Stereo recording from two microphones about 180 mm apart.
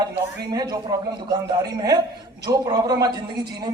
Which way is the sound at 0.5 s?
20° right (ahead or behind).